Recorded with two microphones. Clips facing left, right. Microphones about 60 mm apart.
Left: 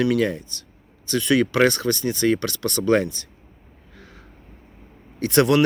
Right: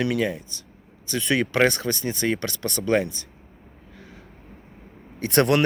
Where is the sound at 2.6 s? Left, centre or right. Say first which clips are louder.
Left 4 dB; left.